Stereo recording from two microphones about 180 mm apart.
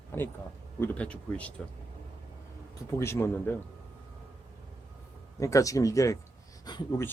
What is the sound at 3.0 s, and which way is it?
Speech, 15° left (ahead or behind).